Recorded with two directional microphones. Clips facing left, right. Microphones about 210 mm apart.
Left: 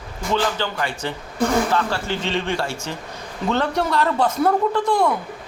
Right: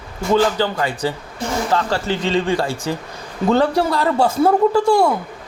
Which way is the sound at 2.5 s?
15° right (ahead or behind).